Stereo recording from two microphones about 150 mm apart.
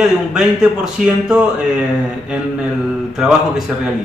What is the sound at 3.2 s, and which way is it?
Speech, 5° right (ahead or behind).